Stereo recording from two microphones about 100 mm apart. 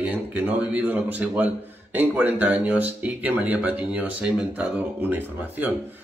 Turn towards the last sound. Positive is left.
turn(degrees=-15)  # may be behind; listen again after turning